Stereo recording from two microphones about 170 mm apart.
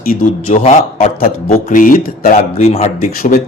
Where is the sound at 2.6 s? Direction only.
35° left (ahead or behind).